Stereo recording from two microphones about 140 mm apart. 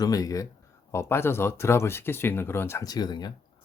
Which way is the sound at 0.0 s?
25° left (ahead or behind).